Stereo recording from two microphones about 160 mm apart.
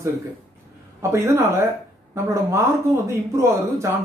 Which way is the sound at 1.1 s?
15° right (ahead or behind).